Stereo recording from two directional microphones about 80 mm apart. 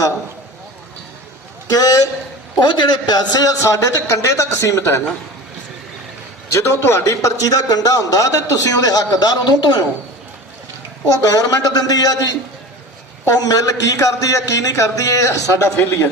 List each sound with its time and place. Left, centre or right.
1.7 s a man's voice: left
2.6 s a man's voice: left
6.5 s a man's voice: left
11.1 s a man's voice: left
15.6 s a man's voice: left